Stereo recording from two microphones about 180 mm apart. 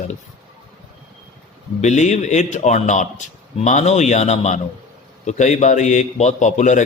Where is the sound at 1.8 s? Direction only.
40° left (ahead or behind).